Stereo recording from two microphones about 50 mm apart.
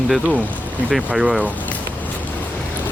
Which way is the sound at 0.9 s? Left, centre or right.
Right.